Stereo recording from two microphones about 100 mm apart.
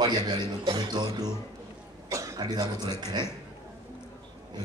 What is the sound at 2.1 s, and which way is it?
Cough, 30° right (ahead or behind).